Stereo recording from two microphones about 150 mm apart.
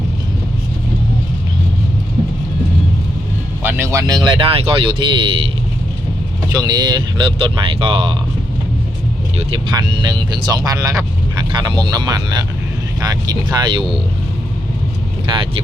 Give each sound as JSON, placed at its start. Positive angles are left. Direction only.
{"t": 3.6, "sound": "speech", "side_deg": -15}
{"t": 6.5, "sound": "speech", "side_deg": -25}
{"t": 9.7, "sound": "speech", "side_deg": -30}